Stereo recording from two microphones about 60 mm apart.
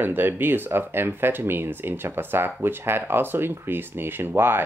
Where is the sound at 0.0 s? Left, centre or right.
Right.